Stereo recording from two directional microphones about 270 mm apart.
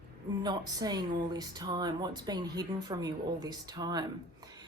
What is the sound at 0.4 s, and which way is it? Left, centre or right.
Speech, centre.